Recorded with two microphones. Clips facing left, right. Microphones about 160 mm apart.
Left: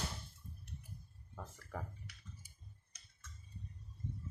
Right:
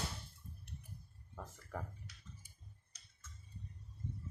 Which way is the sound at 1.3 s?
Centre (ahead or behind).